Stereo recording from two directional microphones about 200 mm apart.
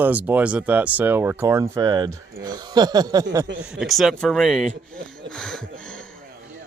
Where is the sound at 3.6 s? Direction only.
5° right (ahead or behind).